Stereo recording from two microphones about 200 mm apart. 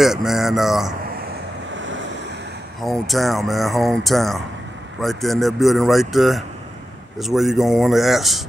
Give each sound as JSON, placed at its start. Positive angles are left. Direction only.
{"t": 0.0, "sound": "speech", "side_deg": 0}
{"t": 2.8, "sound": "speech", "side_deg": 0}